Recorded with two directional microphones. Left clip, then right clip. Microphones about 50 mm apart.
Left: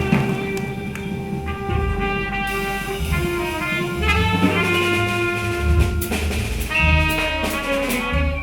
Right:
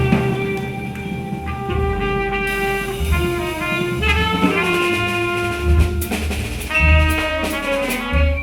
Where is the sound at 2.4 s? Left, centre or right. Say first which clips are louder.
Right 3 dB; right.